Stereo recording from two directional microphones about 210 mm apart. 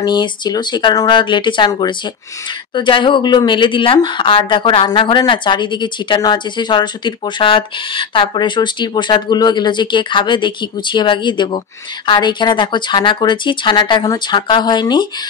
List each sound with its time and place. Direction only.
0.0 s speech: 20° left (ahead or behind)